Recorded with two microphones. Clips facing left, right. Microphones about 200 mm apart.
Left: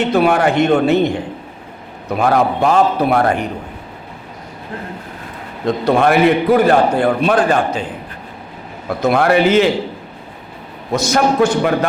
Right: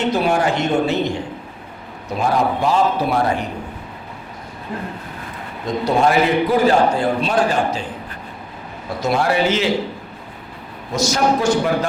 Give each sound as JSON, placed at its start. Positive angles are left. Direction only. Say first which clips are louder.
{"t": 0.1, "sound": "a man's voice", "louder": "left 5 dB", "side_deg": 60}
{"t": 5.6, "sound": "a man's voice", "louder": "left 3 dB", "side_deg": 60}
{"t": 9.0, "sound": "a man's voice", "louder": "left 5 dB", "side_deg": 60}
{"t": 10.9, "sound": "a man's voice", "louder": "left 3 dB", "side_deg": 55}